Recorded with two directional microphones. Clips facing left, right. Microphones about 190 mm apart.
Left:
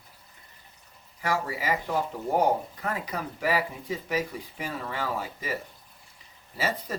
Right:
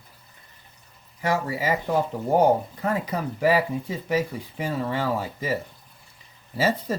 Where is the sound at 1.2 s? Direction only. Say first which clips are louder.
Right 4 dB; 25° right (ahead or behind).